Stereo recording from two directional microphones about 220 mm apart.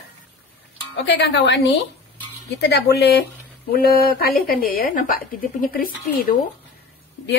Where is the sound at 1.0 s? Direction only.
50° left (ahead or behind).